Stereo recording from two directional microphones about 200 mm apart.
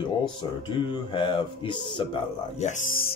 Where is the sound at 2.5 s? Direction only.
35° left (ahead or behind).